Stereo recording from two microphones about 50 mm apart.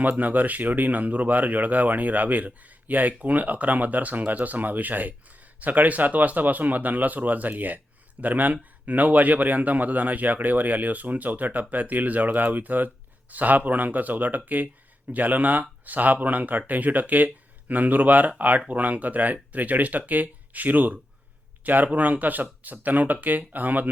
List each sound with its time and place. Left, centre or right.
0.0 s speech: right